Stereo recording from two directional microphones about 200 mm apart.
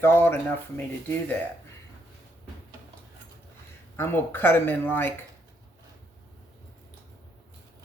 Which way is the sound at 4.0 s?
10° left (ahead or behind).